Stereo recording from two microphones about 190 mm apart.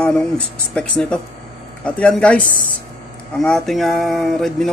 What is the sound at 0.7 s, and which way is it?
Speech, 5° left (ahead or behind).